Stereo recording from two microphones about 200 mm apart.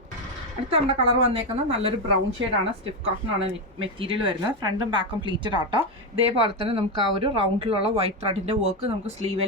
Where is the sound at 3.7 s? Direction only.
25° right (ahead or behind).